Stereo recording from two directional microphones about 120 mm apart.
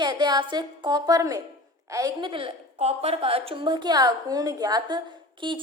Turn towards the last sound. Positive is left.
turn(degrees=-40)  # may be behind; listen again after turning